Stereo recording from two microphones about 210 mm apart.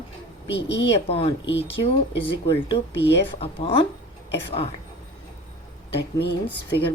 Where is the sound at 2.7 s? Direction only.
55° left (ahead or behind).